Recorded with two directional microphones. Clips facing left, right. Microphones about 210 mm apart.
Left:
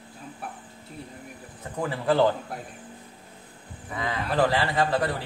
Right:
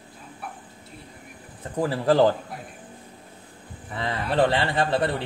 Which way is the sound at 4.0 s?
30° right (ahead or behind).